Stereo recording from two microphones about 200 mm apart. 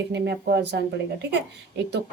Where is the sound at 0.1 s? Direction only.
55° right (ahead or behind).